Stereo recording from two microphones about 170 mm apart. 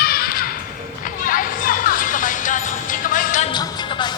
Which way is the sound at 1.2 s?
55° left (ahead or behind).